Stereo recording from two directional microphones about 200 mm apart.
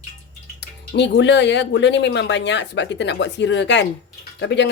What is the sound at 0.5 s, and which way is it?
Speech, 60° left (ahead or behind).